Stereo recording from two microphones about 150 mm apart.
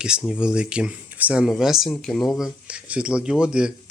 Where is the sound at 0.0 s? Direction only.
5° right (ahead or behind).